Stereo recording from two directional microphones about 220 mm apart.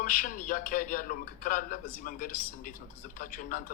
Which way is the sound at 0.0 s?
40° left (ahead or behind).